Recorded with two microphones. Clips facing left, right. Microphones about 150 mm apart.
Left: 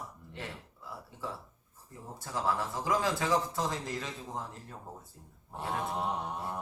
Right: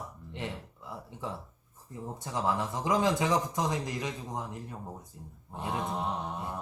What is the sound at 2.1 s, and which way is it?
A man's voice, 20° right (ahead or behind).